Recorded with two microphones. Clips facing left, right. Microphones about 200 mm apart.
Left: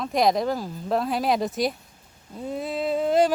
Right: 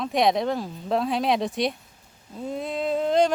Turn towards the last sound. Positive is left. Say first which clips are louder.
# even
turn(degrees=5)  # may be behind; listen again after turning